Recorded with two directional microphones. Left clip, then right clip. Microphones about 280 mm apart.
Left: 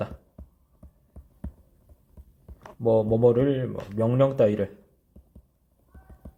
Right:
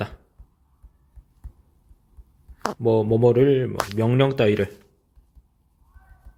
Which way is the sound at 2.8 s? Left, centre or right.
Right.